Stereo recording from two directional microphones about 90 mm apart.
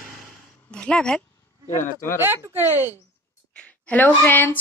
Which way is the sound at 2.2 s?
25° right (ahead or behind).